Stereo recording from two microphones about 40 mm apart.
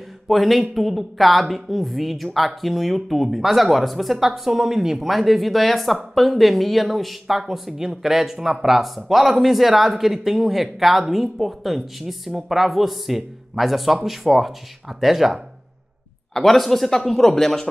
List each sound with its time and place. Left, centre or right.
0.3 s speech: centre
16.3 s speech: centre